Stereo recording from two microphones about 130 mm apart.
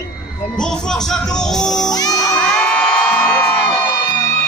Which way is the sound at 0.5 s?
5° left (ahead or behind).